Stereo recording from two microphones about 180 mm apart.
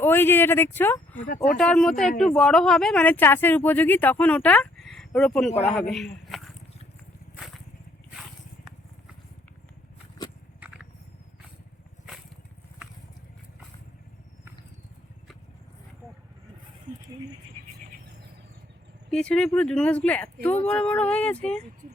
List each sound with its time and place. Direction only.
0.0 s speech: 10° left (ahead or behind)
16.9 s a sound: 45° right (ahead or behind)
19.1 s speech: 5° left (ahead or behind)